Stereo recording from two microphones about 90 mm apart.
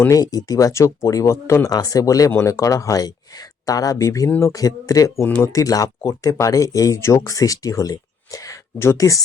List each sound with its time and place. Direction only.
0.1 s speech: 45° left (ahead or behind)
5.2 s speech: 25° left (ahead or behind)
5.5 s speech: 40° left (ahead or behind)